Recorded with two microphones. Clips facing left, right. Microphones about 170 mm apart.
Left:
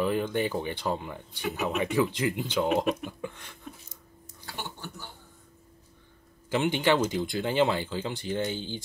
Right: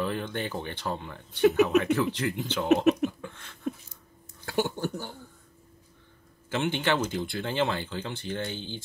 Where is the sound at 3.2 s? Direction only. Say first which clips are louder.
Left 4 dB; 15° left (ahead or behind).